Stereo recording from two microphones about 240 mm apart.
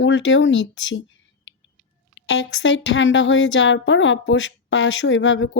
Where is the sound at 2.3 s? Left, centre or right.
Left.